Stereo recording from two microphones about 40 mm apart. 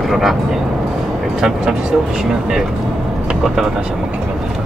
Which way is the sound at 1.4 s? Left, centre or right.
Centre.